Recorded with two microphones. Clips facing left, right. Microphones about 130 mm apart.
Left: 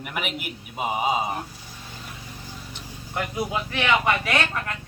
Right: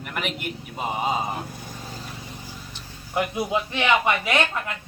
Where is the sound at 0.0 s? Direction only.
5° left (ahead or behind).